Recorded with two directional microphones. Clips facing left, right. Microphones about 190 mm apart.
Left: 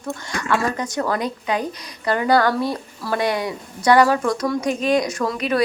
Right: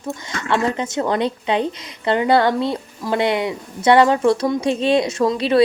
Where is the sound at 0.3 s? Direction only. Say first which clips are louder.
Right 2 dB; 25° right (ahead or behind).